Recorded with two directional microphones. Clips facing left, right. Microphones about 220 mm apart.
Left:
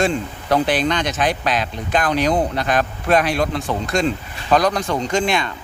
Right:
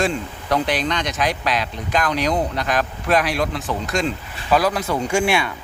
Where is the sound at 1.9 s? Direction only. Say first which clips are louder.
Left 2 dB; 30° left (ahead or behind).